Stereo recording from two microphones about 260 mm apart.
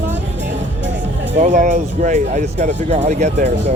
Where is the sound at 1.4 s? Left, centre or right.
Right.